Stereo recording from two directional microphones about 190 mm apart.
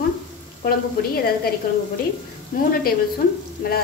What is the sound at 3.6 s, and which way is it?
Speech, 50° left (ahead or behind).